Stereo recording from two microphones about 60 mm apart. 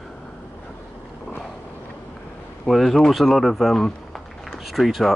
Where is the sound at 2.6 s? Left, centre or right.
Centre.